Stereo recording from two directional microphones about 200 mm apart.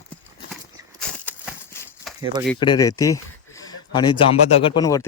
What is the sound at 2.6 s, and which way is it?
Speech, 20° left (ahead or behind).